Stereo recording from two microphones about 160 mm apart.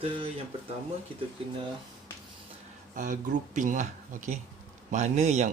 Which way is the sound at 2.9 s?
55° right (ahead or behind).